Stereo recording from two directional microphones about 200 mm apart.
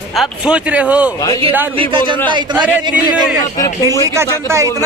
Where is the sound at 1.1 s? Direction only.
20° left (ahead or behind).